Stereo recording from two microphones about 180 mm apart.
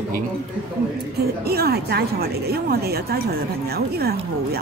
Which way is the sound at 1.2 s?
60° right (ahead or behind).